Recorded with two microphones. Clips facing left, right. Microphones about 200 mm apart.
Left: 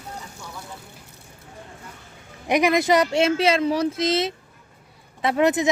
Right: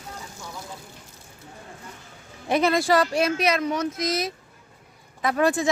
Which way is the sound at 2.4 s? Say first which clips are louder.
Left 2 dB; 15° left (ahead or behind).